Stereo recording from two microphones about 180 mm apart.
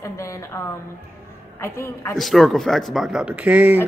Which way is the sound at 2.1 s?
Centre (ahead or behind).